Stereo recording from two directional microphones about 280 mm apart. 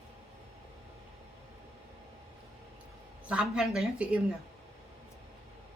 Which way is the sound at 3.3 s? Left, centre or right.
Centre.